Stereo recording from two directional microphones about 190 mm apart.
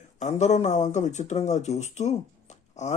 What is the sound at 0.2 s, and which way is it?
Speech, 40° left (ahead or behind).